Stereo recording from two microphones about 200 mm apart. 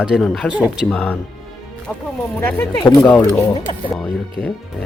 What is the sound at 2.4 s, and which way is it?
Speech, 10° left (ahead or behind).